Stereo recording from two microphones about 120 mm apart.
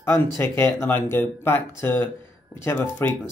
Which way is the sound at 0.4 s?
20° left (ahead or behind).